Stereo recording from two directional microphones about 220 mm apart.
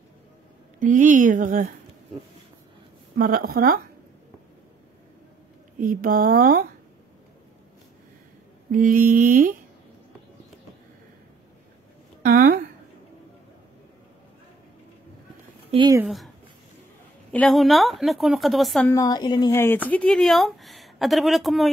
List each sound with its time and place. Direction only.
0.7 s speech: 35° right (ahead or behind)
3.2 s speech: 40° right (ahead or behind)
5.8 s speech: 40° right (ahead or behind)
8.7 s speech: 40° right (ahead or behind)
12.2 s speech: 40° right (ahead or behind)
15.7 s speech: 20° right (ahead or behind)
16.0 s speech: centre (ahead or behind)
17.3 s speech: 5° left (ahead or behind)
18.9 s speech: 15° left (ahead or behind); by 21.6 s centre (ahead or behind)